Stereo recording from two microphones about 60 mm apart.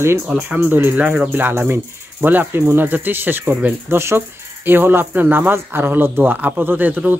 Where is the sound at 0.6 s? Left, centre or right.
Right.